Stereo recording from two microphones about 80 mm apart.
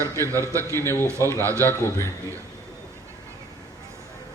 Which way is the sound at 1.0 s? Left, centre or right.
Right.